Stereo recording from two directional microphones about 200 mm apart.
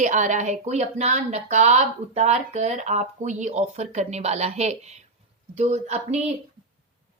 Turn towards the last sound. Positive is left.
turn(degrees=-35)  # may be behind; listen again after turning